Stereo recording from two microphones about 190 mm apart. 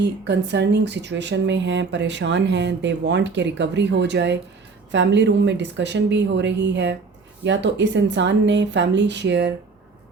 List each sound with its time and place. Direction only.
0.0 s speech: 65° right (ahead or behind)